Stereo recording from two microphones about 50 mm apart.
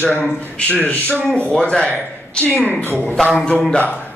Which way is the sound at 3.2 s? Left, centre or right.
Centre.